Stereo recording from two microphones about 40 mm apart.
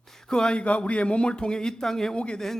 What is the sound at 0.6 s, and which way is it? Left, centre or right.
A man's voice, left.